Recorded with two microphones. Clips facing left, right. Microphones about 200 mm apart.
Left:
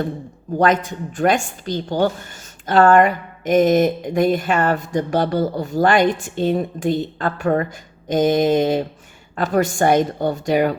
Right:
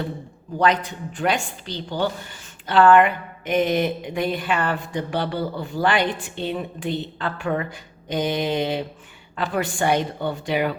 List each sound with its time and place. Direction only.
0.6 s speech: 45° left (ahead or behind)